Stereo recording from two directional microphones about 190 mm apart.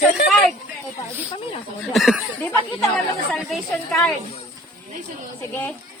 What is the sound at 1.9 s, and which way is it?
Speech, centre (ahead or behind).